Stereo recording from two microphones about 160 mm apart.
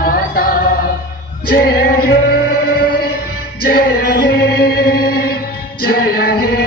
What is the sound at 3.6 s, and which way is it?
Chant, 80° left.